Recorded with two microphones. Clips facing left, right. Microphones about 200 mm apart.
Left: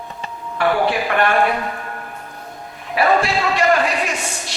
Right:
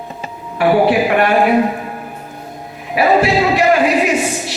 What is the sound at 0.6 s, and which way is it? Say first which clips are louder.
A man's voice: right 6 dB; 15° right (ahead or behind).